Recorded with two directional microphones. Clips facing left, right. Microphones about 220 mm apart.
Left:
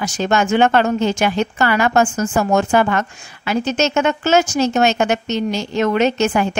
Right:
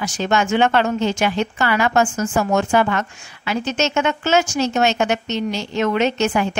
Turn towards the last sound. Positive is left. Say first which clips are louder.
# left 2 dB
turn(degrees=45)  # may be behind; listen again after turning